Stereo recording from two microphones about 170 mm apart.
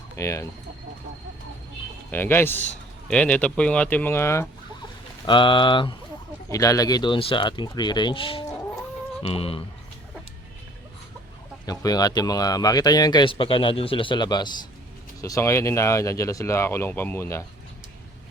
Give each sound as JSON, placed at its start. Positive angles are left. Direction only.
{"t": 0.2, "sound": "speech", "side_deg": 15}
{"t": 2.0, "sound": "a man's voice", "side_deg": 10}
{"t": 5.2, "sound": "speech", "side_deg": 30}
{"t": 11.6, "sound": "speech", "side_deg": 20}